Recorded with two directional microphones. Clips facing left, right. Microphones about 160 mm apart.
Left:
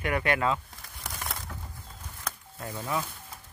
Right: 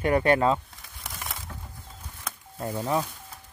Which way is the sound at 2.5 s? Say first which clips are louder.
Right 8 dB; 30° right (ahead or behind).